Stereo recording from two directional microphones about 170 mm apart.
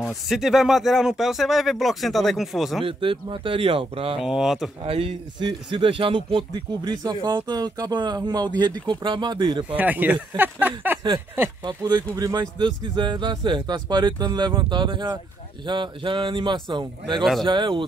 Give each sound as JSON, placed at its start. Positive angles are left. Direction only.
{"t": 0.3, "sound": "speech", "side_deg": 0}
{"t": 2.8, "sound": "speech", "side_deg": -30}
{"t": 4.2, "sound": "speech", "side_deg": 0}
{"t": 4.8, "sound": "a man's voice", "side_deg": -30}
{"t": 9.8, "sound": "a sound", "side_deg": -10}
{"t": 11.6, "sound": "a man's voice", "side_deg": -25}
{"t": 17.2, "sound": "speech", "side_deg": 0}
{"t": 17.5, "sound": "a man's voice", "side_deg": -30}